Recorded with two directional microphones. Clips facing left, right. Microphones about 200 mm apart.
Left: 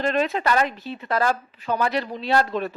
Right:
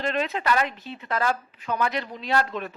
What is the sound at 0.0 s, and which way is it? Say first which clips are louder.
Speech: left 4 dB; 40° left (ahead or behind).